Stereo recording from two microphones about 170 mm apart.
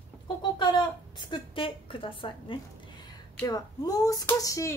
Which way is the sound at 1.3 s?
30° left (ahead or behind).